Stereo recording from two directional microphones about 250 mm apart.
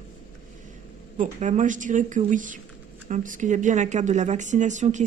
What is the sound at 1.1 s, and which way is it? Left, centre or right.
Speech, right.